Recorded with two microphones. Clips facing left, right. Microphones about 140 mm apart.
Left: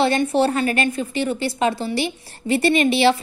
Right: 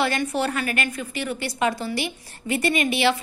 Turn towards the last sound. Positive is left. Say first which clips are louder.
# left 5 dB
turn(degrees=30)  # may be behind; listen again after turning